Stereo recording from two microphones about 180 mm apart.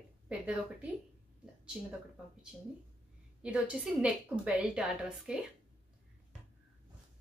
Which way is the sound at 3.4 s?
5° right (ahead or behind).